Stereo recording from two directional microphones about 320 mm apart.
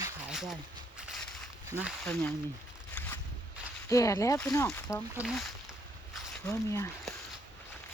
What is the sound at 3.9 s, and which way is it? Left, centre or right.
Speech, centre.